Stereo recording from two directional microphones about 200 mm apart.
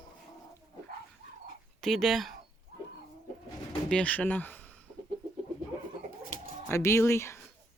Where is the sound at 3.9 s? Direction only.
5° left (ahead or behind).